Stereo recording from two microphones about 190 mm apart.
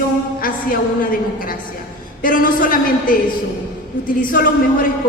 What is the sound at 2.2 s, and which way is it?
A woman's voice, 45° left (ahead or behind).